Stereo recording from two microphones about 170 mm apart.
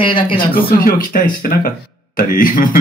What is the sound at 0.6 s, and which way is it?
Speech, 60° left (ahead or behind).